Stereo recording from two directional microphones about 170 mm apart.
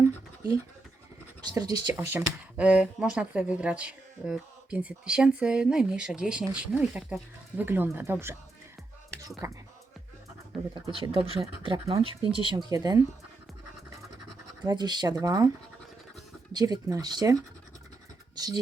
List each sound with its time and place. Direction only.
1.4 s speech: 20° right (ahead or behind)
9.4 s speech: 15° right (ahead or behind)
10.8 s speech: 30° right (ahead or behind)
14.6 s speech: 25° right (ahead or behind)
16.5 s speech: 25° right (ahead or behind)